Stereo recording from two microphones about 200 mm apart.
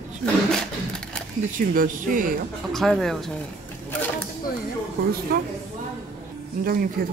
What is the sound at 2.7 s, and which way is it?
Speech, centre (ahead or behind).